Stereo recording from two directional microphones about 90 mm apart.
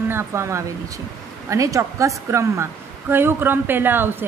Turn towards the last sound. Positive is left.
turn(degrees=-25)  # may be behind; listen again after turning